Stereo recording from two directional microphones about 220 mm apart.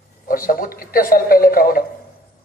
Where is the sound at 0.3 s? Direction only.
40° left (ahead or behind).